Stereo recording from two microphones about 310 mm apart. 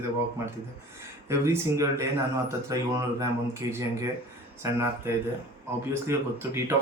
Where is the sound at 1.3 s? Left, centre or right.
Centre.